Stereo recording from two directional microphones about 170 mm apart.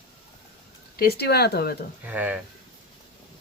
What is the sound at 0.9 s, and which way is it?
Speech, 65° left (ahead or behind).